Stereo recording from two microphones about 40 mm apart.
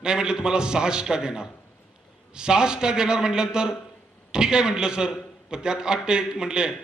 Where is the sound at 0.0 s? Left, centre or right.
Centre.